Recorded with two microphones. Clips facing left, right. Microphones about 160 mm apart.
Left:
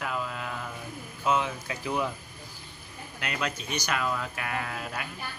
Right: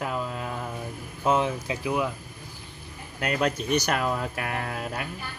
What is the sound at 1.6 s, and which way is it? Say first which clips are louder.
Speech: right 3 dB; 10° right (ahead or behind).